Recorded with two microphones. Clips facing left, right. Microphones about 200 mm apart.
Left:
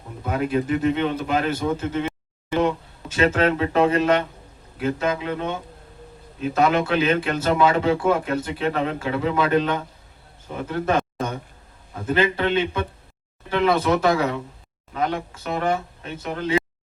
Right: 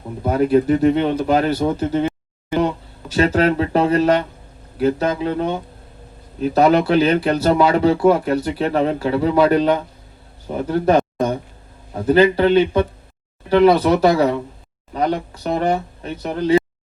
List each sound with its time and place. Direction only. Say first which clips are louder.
0.2 s speech: right 7 dB; 40° right (ahead or behind)